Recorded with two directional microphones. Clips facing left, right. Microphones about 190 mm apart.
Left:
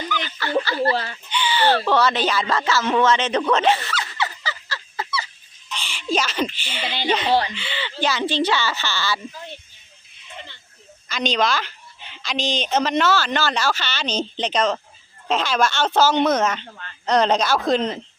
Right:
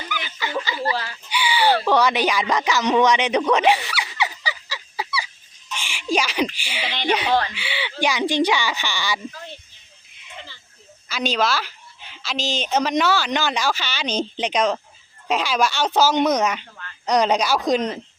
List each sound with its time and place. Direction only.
0.1 s a sound: 15° right (ahead or behind)
0.6 s speech: 15° right (ahead or behind)
0.9 s speech: 25° left (ahead or behind)
1.3 s a sound: 10° right (ahead or behind)
7.5 s speech: 10° right (ahead or behind)
11.1 s speech: 5° right (ahead or behind)